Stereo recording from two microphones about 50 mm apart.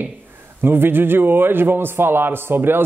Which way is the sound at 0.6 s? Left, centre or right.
Right.